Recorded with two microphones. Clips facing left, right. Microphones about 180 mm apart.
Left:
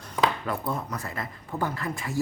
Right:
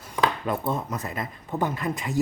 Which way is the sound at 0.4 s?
20° right (ahead or behind).